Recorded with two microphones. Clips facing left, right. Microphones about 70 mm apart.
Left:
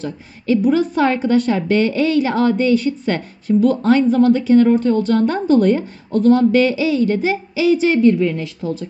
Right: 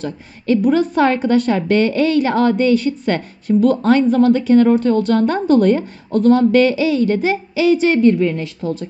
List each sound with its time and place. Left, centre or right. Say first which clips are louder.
0.0 s speech: right 1 dB; right